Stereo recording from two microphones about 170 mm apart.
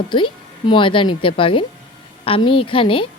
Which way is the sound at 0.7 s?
30° left (ahead or behind).